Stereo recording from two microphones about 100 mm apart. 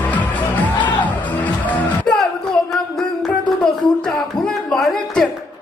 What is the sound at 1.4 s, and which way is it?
Music, 15° left (ahead or behind).